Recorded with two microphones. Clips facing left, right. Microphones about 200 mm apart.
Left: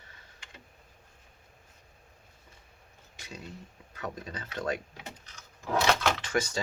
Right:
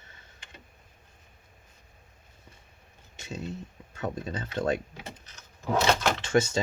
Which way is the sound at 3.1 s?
25° right (ahead or behind).